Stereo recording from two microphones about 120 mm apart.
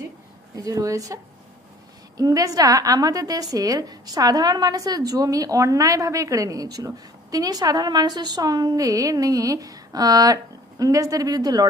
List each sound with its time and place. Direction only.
0.6 s a woman's voice: 30° right (ahead or behind)